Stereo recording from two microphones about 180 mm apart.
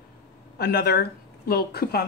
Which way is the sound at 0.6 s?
60° left (ahead or behind).